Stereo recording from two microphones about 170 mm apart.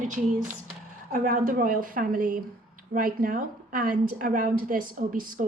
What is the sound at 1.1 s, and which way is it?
A woman's voice, 55° right (ahead or behind).